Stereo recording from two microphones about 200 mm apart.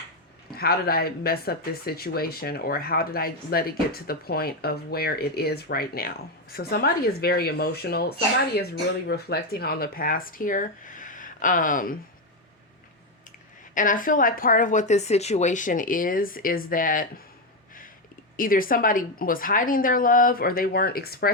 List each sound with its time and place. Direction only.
0.5 s speech: 50° left (ahead or behind)
9.0 s speech: 50° left (ahead or behind)
13.7 s speech: 40° left (ahead or behind)
18.3 s speech: 45° left (ahead or behind)